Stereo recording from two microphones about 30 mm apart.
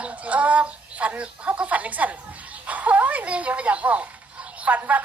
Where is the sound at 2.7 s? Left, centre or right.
Right.